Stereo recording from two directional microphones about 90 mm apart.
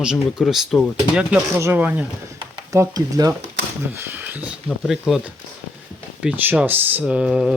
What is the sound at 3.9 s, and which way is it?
Speech, 20° right (ahead or behind).